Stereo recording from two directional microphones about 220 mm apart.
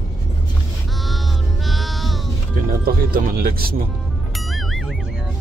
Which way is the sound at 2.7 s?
40° right (ahead or behind).